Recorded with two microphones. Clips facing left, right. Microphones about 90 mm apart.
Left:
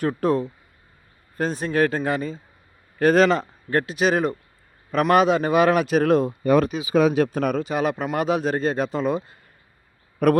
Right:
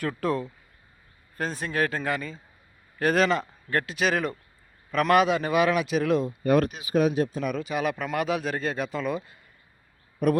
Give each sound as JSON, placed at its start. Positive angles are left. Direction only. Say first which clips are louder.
{"t": 0.0, "sound": "a man's voice", "louder": "left 6 dB", "side_deg": 25}
{"t": 6.8, "sound": "speech", "louder": "left 5 dB", "side_deg": 90}
{"t": 7.5, "sound": "a man's voice", "louder": "left 5 dB", "side_deg": 35}
{"t": 10.2, "sound": "a man's voice", "louder": "left 5 dB", "side_deg": 70}